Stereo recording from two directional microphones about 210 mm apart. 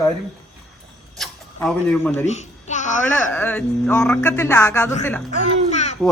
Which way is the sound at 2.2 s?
35° left (ahead or behind).